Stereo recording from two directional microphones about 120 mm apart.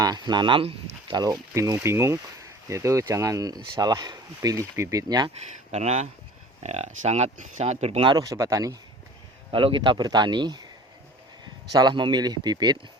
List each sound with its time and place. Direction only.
0.0 s speech: 35° right (ahead or behind)
1.1 s speech: 35° right (ahead or behind)
5.7 s speech: 65° right (ahead or behind)
8.0 s speech: 30° right (ahead or behind)
9.5 s speech: 45° right (ahead or behind)
11.7 s speech: 35° right (ahead or behind)